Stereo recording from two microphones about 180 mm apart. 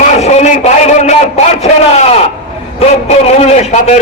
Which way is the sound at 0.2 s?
40° left (ahead or behind).